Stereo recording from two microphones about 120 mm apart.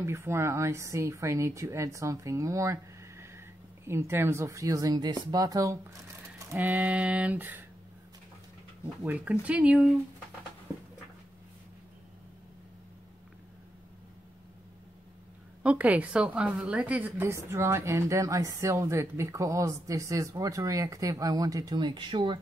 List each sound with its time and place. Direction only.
0.0 s a woman's voice: 20° right (ahead or behind)
6.6 s speech: 10° right (ahead or behind)
8.8 s speech: 15° right (ahead or behind)
15.6 s a woman's voice: 10° right (ahead or behind); by 22.4 s 40° right (ahead or behind)